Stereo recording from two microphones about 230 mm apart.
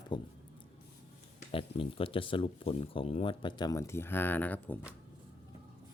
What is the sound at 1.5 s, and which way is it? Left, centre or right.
Speech, left.